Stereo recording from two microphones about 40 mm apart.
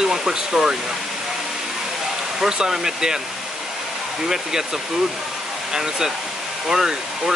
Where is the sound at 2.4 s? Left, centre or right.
Centre.